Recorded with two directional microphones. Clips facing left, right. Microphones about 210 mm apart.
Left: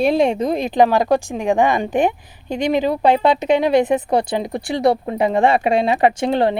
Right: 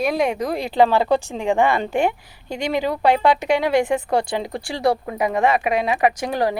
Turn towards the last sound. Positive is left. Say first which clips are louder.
# left 4 dB
turn(degrees=25)  # may be behind; listen again after turning